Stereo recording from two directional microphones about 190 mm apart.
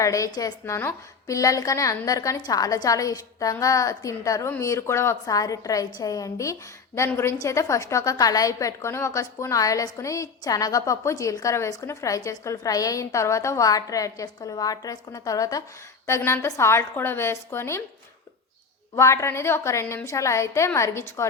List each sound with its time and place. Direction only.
0.0 s a woman's voice: 15° left (ahead or behind)
18.9 s a woman's voice: 15° left (ahead or behind)